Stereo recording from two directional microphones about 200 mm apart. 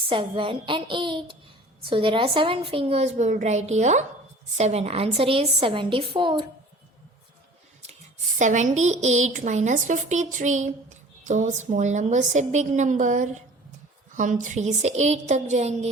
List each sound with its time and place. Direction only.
0.1 s a woman's voice: 25° right (ahead or behind)
8.4 s a woman's voice: 35° right (ahead or behind)